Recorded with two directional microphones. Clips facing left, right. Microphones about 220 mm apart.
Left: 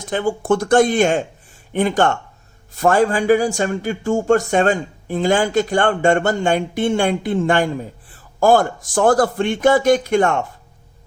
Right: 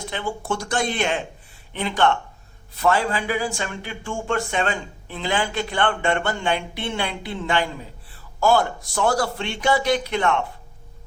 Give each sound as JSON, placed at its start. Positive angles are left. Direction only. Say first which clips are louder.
{"t": 0.0, "sound": "speech", "louder": "left 8 dB", "side_deg": 45}